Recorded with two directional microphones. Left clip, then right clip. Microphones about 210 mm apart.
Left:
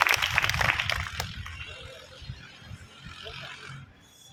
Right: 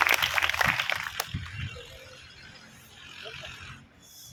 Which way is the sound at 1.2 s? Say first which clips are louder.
Right 1 dB; 25° right (ahead or behind).